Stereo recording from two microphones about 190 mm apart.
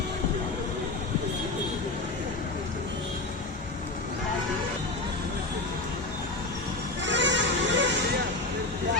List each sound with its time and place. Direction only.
7.0 s music: 70° right (ahead or behind)